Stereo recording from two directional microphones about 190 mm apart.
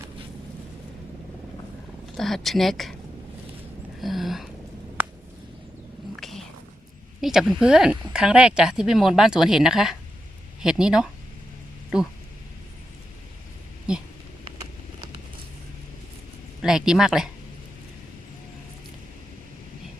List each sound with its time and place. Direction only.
2.1 s speech: centre (ahead or behind)
4.0 s speech: centre (ahead or behind)
6.1 s cat: centre (ahead or behind)
7.2 s speech: centre (ahead or behind)
13.9 s speech: 5° right (ahead or behind)
16.6 s speech: 5° right (ahead or behind)